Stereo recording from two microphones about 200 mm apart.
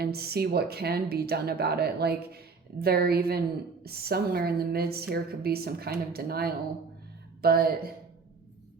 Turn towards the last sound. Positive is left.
turn(degrees=-50)  # may be behind; listen again after turning